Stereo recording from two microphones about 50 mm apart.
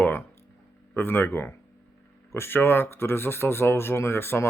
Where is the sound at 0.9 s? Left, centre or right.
Left.